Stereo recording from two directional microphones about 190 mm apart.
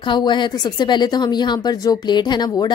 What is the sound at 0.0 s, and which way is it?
A woman's voice, 25° left (ahead or behind).